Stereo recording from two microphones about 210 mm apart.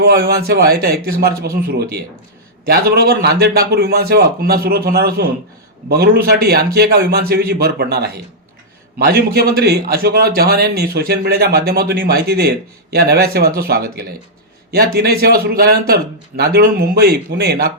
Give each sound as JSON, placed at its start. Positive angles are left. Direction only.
{"t": 0.0, "sound": "a man's voice", "side_deg": -50}